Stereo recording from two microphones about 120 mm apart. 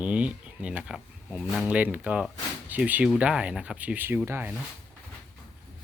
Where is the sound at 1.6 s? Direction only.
15° right (ahead or behind).